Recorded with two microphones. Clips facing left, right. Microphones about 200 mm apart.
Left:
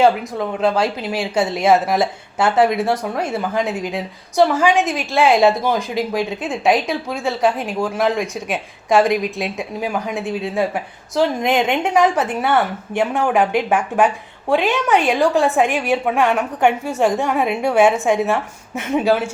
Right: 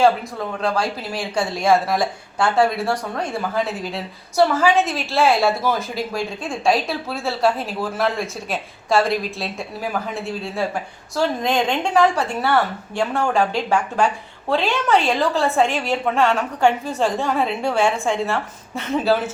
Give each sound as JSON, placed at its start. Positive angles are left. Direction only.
{"t": 0.6, "sound": "a woman's voice", "side_deg": 25}